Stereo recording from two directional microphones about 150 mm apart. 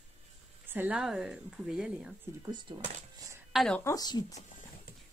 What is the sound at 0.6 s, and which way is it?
Speech, 10° right (ahead or behind).